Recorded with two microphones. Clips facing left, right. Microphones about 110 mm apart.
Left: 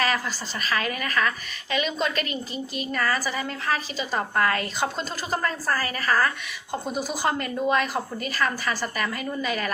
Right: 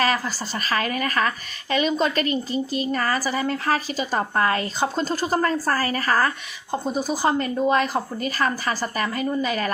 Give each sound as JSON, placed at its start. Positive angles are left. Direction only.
{"t": 0.0, "sound": "a woman's voice", "side_deg": -40}
{"t": 4.4, "sound": "a woman's voice", "side_deg": -30}